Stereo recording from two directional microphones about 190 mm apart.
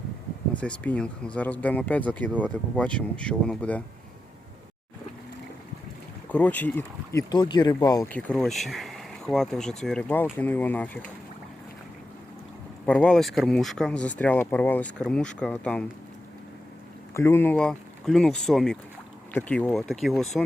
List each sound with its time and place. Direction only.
0.5 s speech: 5° left (ahead or behind)
6.3 s speech: 10° left (ahead or behind)
8.1 s speech: 5° left (ahead or behind)
12.8 s speech: 5° left (ahead or behind)
17.2 s speech: 15° left (ahead or behind)